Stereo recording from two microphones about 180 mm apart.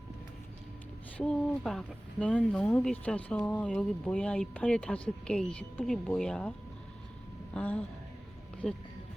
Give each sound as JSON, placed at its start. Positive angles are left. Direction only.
{"t": 1.2, "sound": "speech", "side_deg": 5}
{"t": 7.5, "sound": "speech", "side_deg": 10}